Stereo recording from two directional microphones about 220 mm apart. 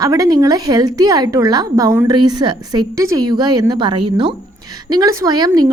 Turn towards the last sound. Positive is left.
turn(degrees=-20)  # may be behind; listen again after turning